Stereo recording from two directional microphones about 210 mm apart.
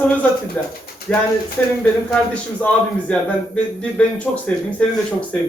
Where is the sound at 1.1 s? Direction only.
5° left (ahead or behind).